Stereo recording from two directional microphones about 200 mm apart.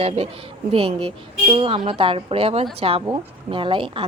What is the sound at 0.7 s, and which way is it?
A woman's voice, 25° right (ahead or behind).